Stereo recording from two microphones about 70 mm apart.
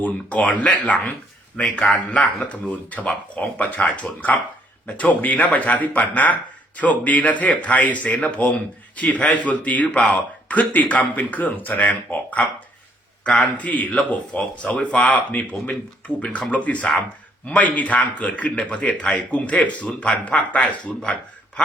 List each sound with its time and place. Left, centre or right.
0.0 s a man's voice: centre